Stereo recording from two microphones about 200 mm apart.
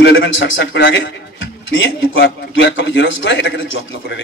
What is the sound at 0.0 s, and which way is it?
A man's voice, 60° left (ahead or behind).